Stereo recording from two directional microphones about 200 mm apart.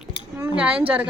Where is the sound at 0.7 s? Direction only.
5° right (ahead or behind).